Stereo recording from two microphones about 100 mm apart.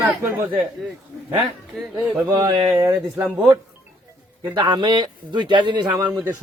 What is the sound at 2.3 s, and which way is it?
Speech, 50° right (ahead or behind).